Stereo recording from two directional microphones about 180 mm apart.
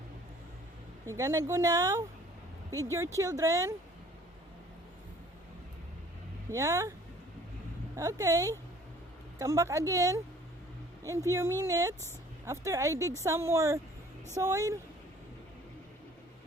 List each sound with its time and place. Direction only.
1.0 s speech: 15° right (ahead or behind)
6.5 s speech: 15° right (ahead or behind)
7.9 s speech: 15° right (ahead or behind)